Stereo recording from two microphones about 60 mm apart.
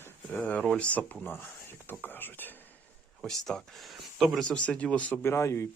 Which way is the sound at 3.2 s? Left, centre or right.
Centre.